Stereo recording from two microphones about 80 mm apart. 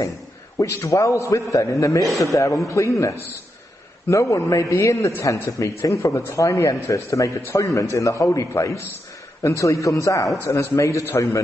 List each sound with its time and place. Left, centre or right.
0.6 s a man's voice: left
2.0 s a man's voice: centre
2.3 s a man's voice: left